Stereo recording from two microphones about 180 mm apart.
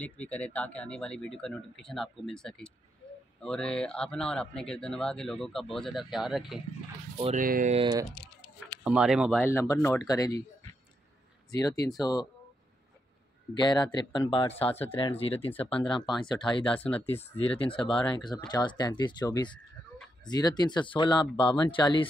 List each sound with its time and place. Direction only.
0.0 s a man's voice: 10° left (ahead or behind)
7.3 s speech: 50° right (ahead or behind)
8.8 s a man's voice: 5° right (ahead or behind)
9.4 s speech: 15° left (ahead or behind)
11.5 s speech: 20° left (ahead or behind)
13.6 s speech: 25° left (ahead or behind)
16.7 s speech: 5° left (ahead or behind)
17.6 s speech: 30° left (ahead or behind)